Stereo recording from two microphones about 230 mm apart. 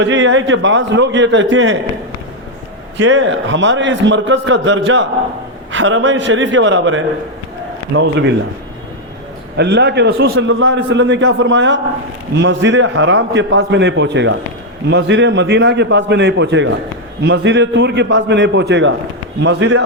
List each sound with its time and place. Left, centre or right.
0.0 s a man's voice: right
3.0 s a man's voice: right
9.6 s a man's voice: right